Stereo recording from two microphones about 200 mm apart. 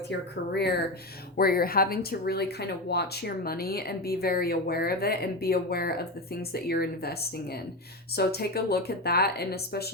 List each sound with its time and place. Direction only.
1.4 s speech: 50° left (ahead or behind)